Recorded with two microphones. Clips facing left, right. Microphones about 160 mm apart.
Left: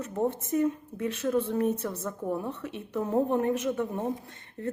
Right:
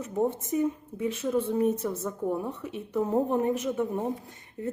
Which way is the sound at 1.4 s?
15° right (ahead or behind).